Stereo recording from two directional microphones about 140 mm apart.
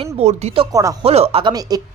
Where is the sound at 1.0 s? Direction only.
45° right (ahead or behind).